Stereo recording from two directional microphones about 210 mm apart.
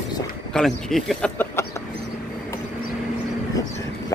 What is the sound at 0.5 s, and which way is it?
Speech, centre (ahead or behind).